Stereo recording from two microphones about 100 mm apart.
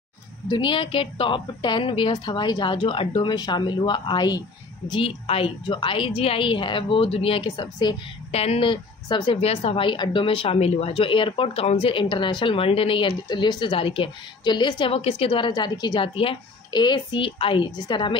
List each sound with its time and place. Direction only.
0.5 s a woman's voice: 55° left (ahead or behind)
5.2 s speech: 75° left (ahead or behind)
5.8 s speech: 60° left (ahead or behind)
8.3 s speech: 90° left
8.6 s speech: 55° left (ahead or behind)
9.4 s speech: 75° left (ahead or behind)
13.3 s a woman's voice: 50° left (ahead or behind)
14.9 s speech: 75° left (ahead or behind)
17.8 s a woman's voice: 50° left (ahead or behind)